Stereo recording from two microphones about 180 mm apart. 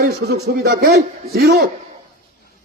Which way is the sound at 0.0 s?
65° right (ahead or behind).